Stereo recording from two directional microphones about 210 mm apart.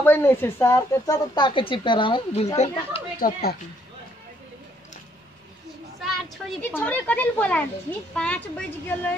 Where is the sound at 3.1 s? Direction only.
45° left (ahead or behind).